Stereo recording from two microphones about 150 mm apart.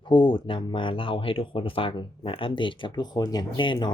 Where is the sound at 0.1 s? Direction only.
35° left (ahead or behind).